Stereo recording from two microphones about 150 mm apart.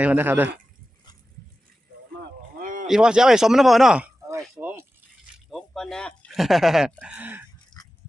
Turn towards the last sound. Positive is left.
turn(degrees=5)  # may be behind; listen again after turning